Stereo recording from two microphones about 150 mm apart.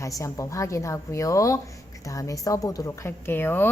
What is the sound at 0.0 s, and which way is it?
A woman's voice, 20° left (ahead or behind).